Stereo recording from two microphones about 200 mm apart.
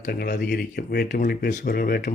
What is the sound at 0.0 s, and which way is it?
Speech, 50° left (ahead or behind).